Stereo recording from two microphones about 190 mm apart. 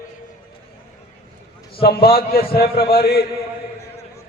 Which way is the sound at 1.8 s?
55° left (ahead or behind).